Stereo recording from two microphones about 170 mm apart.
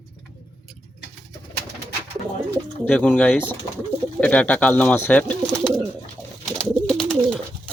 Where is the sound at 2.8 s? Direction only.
5° left (ahead or behind).